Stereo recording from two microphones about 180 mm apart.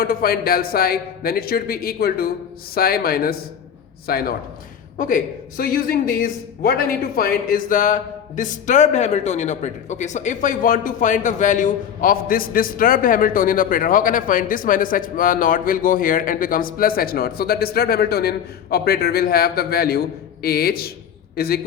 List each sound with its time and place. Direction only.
0.0 s a man's voice: 55° left (ahead or behind)